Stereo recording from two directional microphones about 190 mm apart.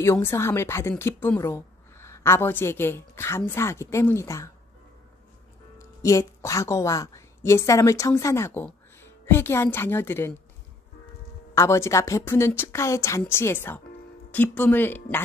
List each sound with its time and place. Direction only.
0.0 s a woman's voice: 15° left (ahead or behind)
5.8 s a woman's voice: 15° left (ahead or behind)
11.5 s a woman's voice: 15° left (ahead or behind)